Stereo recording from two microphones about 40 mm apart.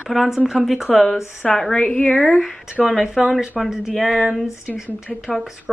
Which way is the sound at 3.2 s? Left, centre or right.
Centre.